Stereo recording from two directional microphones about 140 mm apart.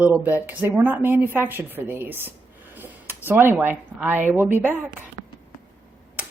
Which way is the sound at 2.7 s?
15° right (ahead or behind).